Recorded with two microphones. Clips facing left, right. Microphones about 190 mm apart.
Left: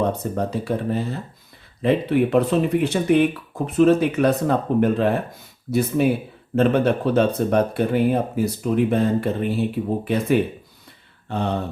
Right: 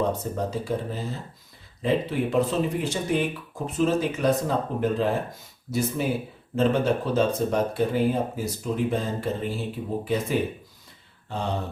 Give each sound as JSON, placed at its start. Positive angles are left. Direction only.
{"t": 0.0, "sound": "speech", "side_deg": 65}
{"t": 6.6, "sound": "speech", "side_deg": 60}